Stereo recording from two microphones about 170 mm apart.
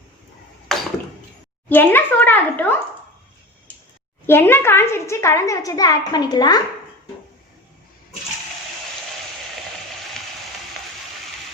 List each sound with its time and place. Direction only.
0.7 s a sound: centre (ahead or behind)
1.7 s a woman's voice: 10° left (ahead or behind)
4.3 s a woman's voice: 15° left (ahead or behind)